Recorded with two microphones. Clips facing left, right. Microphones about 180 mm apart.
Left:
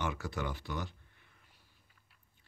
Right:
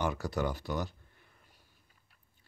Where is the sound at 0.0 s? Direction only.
40° right (ahead or behind).